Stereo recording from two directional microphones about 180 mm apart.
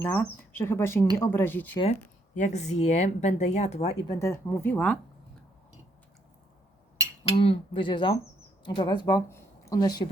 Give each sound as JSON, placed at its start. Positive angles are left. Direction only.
{"t": 0.0, "sound": "speech", "side_deg": 10}
{"t": 1.8, "sound": "speech", "side_deg": 40}
{"t": 4.1, "sound": "speech", "side_deg": 15}
{"t": 7.3, "sound": "speech", "side_deg": 30}